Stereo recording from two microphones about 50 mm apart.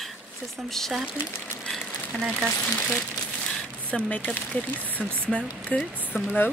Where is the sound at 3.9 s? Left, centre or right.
Left.